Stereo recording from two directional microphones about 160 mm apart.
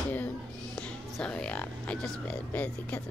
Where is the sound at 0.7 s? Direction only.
5° left (ahead or behind).